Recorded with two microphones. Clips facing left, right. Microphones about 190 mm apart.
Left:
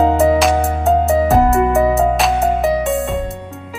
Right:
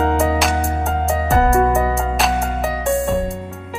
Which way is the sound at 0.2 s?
Centre (ahead or behind).